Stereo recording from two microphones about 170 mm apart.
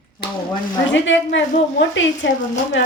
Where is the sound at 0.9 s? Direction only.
90° left.